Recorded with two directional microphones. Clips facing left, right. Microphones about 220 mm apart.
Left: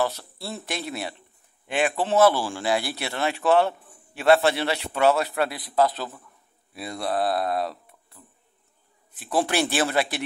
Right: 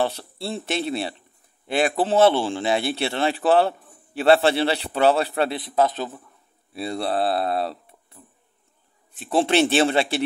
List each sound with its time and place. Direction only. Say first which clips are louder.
0.0 s speech: right 2 dB; 30° right (ahead or behind)
9.2 s speech: right 5 dB; 25° right (ahead or behind)